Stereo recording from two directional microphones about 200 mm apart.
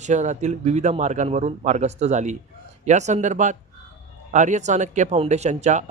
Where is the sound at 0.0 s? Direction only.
35° right (ahead or behind).